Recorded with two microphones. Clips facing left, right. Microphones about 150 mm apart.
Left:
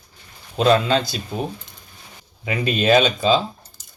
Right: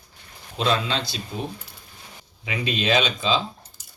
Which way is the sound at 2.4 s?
45° left (ahead or behind).